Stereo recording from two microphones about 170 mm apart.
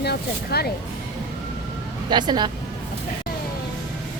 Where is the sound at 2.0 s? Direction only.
25° right (ahead or behind).